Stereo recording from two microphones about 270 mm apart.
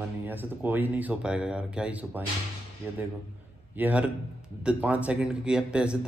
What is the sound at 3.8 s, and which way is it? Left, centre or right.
Speech, centre.